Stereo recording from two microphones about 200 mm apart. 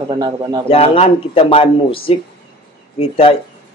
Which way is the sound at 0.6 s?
30° left (ahead or behind).